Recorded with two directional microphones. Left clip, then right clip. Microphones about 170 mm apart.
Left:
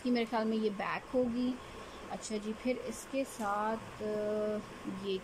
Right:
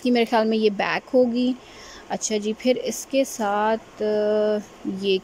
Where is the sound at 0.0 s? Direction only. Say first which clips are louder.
Right 13 dB; 50° right (ahead or behind).